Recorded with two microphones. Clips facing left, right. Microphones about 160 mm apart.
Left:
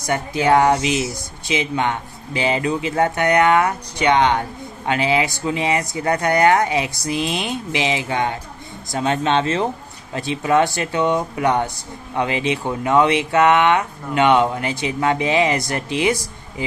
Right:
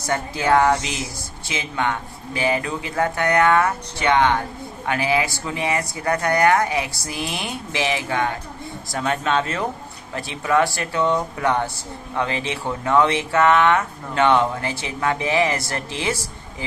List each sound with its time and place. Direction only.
0.0 s speech: 20° left (ahead or behind)